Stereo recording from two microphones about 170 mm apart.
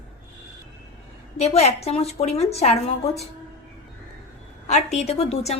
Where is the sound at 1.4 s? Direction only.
40° left (ahead or behind).